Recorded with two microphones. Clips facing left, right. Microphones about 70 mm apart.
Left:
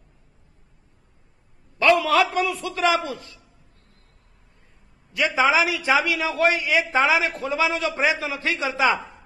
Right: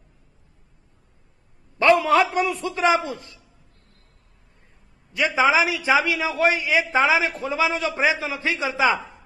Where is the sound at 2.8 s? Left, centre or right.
Right.